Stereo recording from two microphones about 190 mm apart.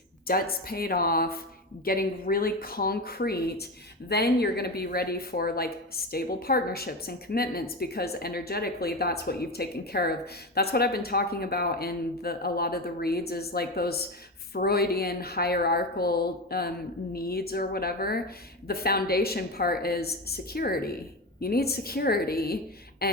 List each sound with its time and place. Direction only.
0.3 s speech: 50° left (ahead or behind)